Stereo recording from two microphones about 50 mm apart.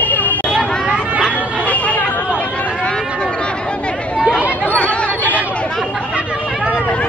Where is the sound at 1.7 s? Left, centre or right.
Left.